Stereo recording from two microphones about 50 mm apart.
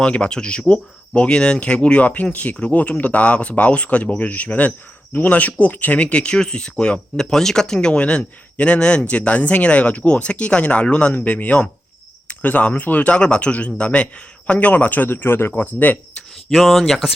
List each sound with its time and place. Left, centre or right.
0.0 s a man's voice: centre; by 15.6 s left
15.6 s a man's voice: left
16.5 s speech: centre